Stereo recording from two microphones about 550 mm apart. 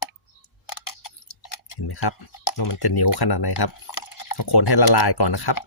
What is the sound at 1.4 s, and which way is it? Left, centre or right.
Speech, left.